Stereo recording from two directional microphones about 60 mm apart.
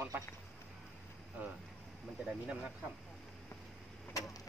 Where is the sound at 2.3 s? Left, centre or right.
Centre.